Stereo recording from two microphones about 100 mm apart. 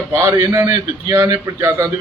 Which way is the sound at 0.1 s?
25° right (ahead or behind).